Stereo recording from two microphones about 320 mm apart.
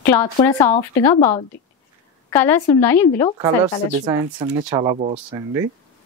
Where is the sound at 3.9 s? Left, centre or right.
Centre.